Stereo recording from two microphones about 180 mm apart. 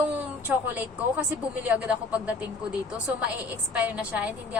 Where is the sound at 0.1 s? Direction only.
10° right (ahead or behind).